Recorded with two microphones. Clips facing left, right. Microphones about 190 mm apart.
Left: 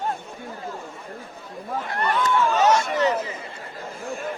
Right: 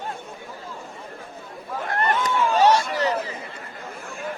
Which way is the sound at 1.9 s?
50° right (ahead or behind).